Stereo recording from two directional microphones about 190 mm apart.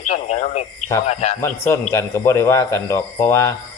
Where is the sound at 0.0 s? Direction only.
35° left (ahead or behind).